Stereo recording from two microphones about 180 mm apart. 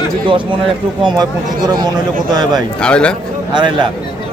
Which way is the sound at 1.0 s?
25° right (ahead or behind).